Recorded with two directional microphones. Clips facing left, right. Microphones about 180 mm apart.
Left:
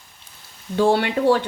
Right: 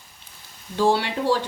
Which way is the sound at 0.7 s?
55° left (ahead or behind).